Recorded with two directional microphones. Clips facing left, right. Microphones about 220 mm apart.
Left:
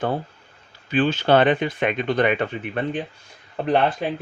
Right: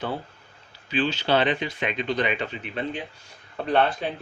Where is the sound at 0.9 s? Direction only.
50° left (ahead or behind).